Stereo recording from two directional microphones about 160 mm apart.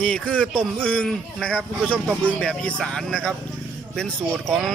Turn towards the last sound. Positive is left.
turn(degrees=0)  # may be behind; listen again after turning